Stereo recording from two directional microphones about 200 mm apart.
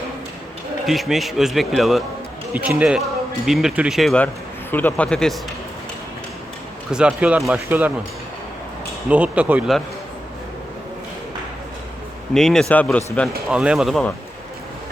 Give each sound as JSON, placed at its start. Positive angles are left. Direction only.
{"t": 0.9, "sound": "a man's voice", "side_deg": 0}
{"t": 6.9, "sound": "speech", "side_deg": -5}
{"t": 9.0, "sound": "speech", "side_deg": -5}
{"t": 12.3, "sound": "a man's voice", "side_deg": 0}